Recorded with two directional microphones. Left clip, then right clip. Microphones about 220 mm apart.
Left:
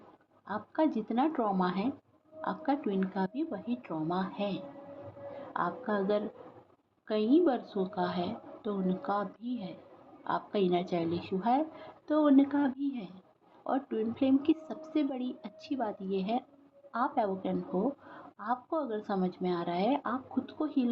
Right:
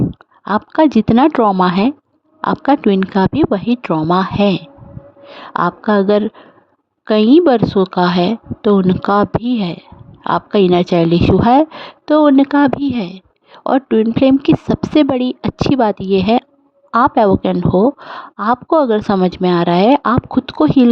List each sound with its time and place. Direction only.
0.4 s a woman's voice: 55° right (ahead or behind)